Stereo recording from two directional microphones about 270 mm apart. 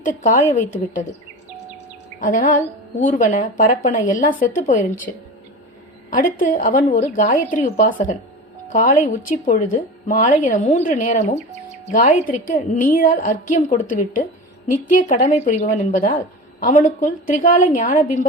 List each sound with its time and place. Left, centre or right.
0.0 s a woman's voice: left
2.2 s a woman's voice: left